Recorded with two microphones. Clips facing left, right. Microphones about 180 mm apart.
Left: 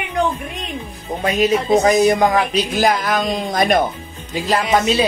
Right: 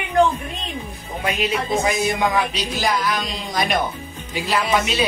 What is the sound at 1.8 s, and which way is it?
Speech, 40° left (ahead or behind).